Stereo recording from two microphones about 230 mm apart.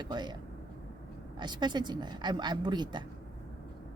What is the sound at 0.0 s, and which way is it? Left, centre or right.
Speech, centre.